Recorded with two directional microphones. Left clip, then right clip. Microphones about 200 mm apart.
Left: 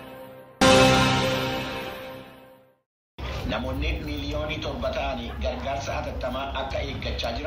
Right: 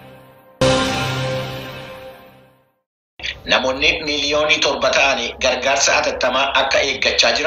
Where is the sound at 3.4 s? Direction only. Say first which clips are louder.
Right 16 dB; 55° right (ahead or behind).